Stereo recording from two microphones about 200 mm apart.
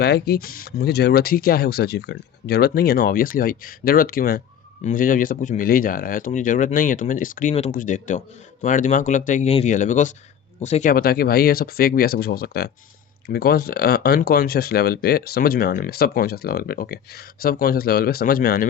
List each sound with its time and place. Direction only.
0.0 s speech: 55° left (ahead or behind)